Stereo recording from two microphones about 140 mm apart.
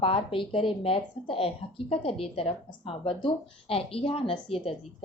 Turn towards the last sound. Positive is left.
turn(degrees=40)  # may be behind; listen again after turning